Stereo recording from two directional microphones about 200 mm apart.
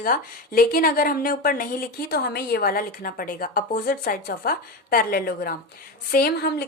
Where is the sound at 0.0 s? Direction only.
45° left (ahead or behind).